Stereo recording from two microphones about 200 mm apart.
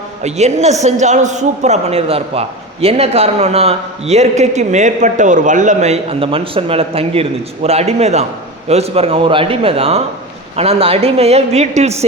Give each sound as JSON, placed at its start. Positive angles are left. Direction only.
{"t": 0.2, "sound": "a man's voice", "side_deg": -35}